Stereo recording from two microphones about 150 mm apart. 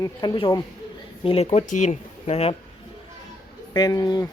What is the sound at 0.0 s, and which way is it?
Speech, 30° left (ahead or behind).